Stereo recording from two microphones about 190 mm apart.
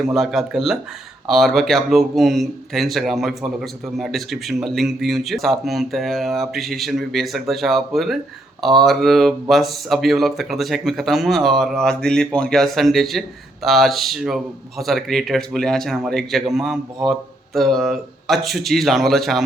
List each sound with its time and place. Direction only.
0.0 s speech: centre (ahead or behind)